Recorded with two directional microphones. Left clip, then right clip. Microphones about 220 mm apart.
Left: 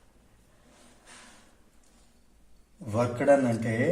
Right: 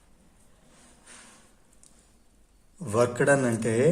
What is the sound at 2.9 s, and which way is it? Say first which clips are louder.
Speech: right 1 dB; 45° right (ahead or behind).